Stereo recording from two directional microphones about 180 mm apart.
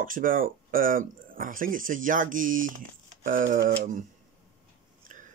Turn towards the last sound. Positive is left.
turn(degrees=-45)  # may be behind; listen again after turning